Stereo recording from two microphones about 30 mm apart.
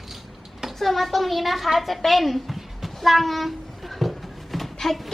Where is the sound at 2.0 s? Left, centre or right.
Centre.